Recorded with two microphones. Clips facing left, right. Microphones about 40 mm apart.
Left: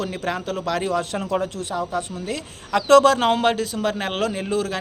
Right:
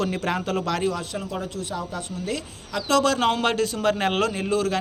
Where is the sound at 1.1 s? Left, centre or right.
Left.